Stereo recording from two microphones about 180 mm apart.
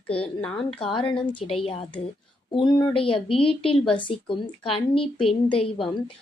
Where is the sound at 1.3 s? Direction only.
30° left (ahead or behind).